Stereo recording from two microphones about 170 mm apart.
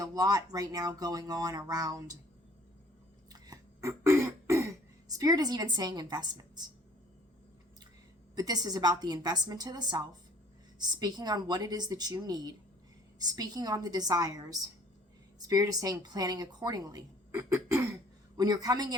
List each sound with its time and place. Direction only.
0.0 s speech: 20° right (ahead or behind)
3.3 s throat clearing: 20° right (ahead or behind)
8.4 s speech: 25° right (ahead or behind)